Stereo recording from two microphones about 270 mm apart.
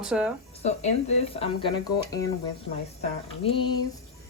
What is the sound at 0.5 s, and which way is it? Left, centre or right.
Speech, left.